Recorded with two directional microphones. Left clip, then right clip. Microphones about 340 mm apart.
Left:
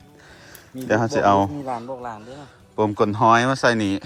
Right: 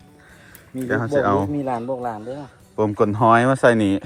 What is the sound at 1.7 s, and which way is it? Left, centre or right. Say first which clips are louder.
Speech: right 4 dB; right.